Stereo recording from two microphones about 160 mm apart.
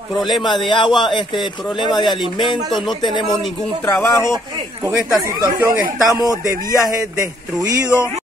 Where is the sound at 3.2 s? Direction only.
Centre (ahead or behind).